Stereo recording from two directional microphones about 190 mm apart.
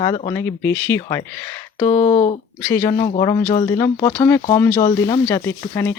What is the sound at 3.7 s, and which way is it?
Speech, 15° left (ahead or behind).